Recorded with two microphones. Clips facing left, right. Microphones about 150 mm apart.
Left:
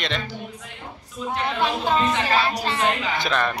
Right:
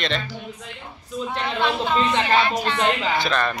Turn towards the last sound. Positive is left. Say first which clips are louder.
# right 1 dB
turn(degrees=15)  # may be behind; listen again after turning